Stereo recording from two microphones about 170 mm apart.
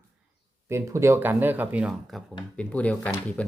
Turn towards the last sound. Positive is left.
turn(degrees=10)  # may be behind; listen again after turning